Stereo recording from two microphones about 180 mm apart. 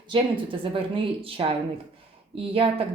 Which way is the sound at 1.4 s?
30° right (ahead or behind).